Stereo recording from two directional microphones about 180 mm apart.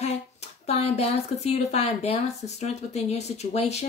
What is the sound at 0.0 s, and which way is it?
Speech, 35° left (ahead or behind).